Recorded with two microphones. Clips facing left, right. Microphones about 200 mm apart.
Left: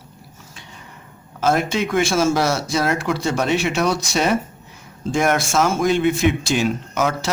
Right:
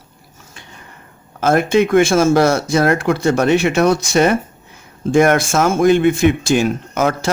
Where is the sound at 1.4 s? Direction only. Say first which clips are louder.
Right 6 dB; 55° right (ahead or behind).